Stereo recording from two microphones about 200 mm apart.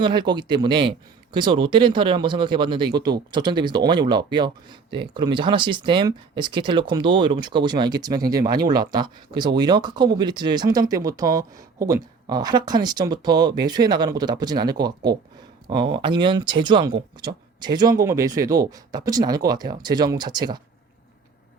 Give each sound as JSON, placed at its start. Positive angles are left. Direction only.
{"t": 0.0, "sound": "speech", "side_deg": -25}